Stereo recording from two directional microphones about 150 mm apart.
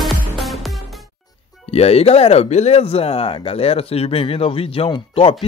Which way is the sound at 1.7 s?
45° left (ahead or behind).